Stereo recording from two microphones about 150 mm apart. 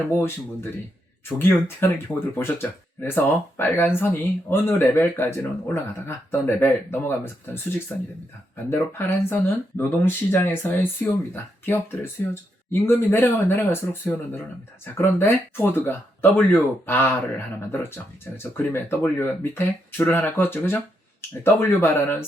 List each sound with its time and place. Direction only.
0.2 s speech: 15° left (ahead or behind)
8.7 s speech: 15° left (ahead or behind)